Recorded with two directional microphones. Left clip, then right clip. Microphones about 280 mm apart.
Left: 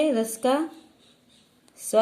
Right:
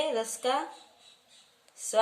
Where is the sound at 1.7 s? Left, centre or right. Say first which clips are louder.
Left 6 dB; centre.